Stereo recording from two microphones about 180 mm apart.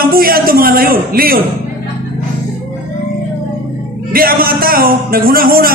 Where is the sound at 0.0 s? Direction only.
55° right (ahead or behind).